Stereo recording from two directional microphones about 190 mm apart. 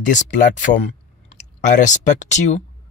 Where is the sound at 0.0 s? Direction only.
40° left (ahead or behind).